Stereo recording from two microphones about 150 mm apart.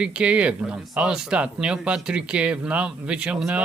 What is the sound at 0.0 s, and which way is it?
Speech, 10° right (ahead or behind).